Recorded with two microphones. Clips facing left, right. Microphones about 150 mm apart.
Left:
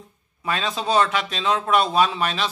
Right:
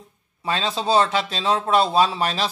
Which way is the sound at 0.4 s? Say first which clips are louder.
Right 1 dB; 30° right (ahead or behind).